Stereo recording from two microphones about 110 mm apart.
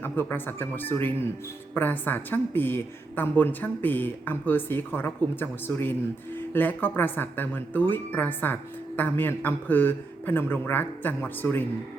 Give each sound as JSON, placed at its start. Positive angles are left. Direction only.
{"t": 0.0, "sound": "a man's voice", "side_deg": 20}